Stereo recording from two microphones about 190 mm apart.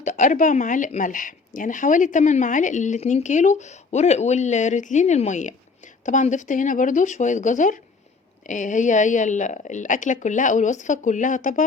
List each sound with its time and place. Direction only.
0.0 s speech: 40° left (ahead or behind)